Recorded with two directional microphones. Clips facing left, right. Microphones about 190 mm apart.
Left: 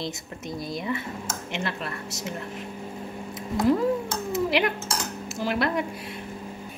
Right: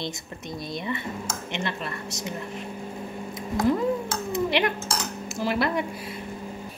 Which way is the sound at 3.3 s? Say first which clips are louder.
Left 1 dB; centre (ahead or behind).